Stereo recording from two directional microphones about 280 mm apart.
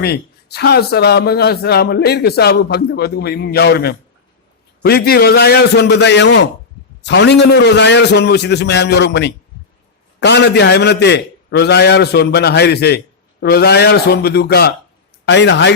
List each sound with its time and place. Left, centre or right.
0.0 s speech: left